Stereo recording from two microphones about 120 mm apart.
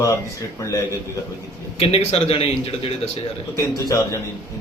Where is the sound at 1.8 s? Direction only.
55° left (ahead or behind).